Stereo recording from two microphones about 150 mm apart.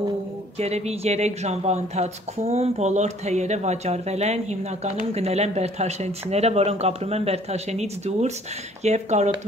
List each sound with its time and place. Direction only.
0.6 s speech: 45° right (ahead or behind)